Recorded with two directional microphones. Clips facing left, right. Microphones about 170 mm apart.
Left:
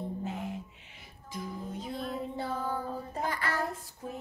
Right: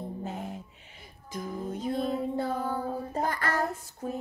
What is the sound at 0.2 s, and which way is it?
Music, 40° right (ahead or behind).